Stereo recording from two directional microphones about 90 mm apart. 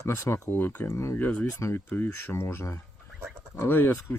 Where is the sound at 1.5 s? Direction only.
30° left (ahead or behind).